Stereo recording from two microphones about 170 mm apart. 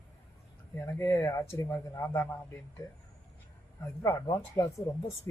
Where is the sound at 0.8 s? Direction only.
15° left (ahead or behind).